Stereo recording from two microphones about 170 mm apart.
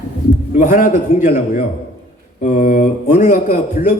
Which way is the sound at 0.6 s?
50° left (ahead or behind).